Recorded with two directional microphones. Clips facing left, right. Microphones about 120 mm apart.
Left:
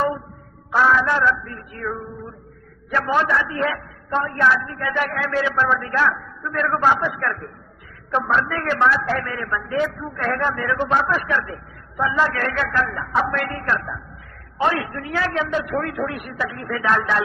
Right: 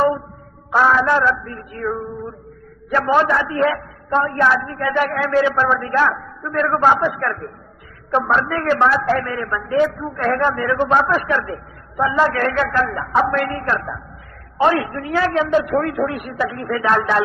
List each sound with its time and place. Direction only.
0.7 s a man's voice: 40° right (ahead or behind)
1.8 s a sound: 30° right (ahead or behind)
2.9 s a woman's voice: 45° right (ahead or behind)